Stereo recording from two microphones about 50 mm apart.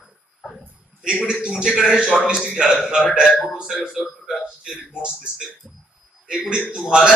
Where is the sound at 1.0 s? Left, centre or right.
Centre.